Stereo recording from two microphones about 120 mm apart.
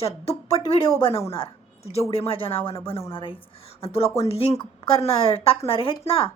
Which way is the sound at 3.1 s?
45° left (ahead or behind).